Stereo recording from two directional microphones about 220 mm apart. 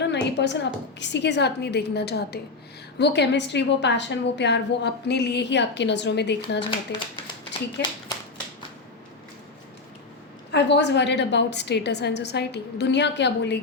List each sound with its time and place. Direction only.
0.0 s a woman's voice: 50° left (ahead or behind)
7.8 s a woman's voice: 50° left (ahead or behind)
10.5 s a woman's voice: 50° left (ahead or behind)